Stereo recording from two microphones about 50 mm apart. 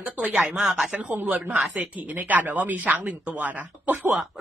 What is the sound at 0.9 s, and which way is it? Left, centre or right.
Speech, right.